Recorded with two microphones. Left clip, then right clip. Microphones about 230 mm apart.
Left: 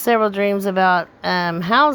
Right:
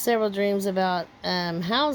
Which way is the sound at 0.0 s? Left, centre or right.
Centre.